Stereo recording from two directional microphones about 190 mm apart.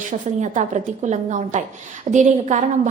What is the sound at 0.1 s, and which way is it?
A woman's voice, 40° right (ahead or behind).